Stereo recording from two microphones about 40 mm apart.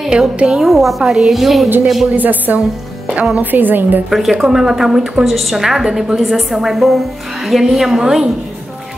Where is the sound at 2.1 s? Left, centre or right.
Right.